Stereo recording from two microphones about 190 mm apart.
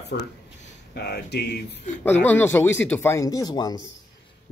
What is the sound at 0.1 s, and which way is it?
Speech, 65° left (ahead or behind).